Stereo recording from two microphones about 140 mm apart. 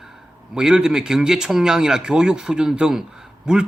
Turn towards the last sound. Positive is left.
turn(degrees=-5)  # may be behind; listen again after turning